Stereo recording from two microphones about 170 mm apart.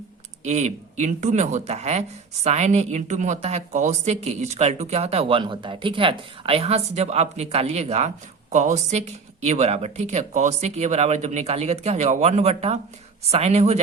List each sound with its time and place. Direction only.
0.4 s speech: 40° right (ahead or behind)